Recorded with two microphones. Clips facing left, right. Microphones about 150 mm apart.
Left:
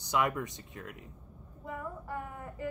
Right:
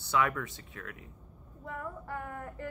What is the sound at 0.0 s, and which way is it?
Speech, 15° left (ahead or behind).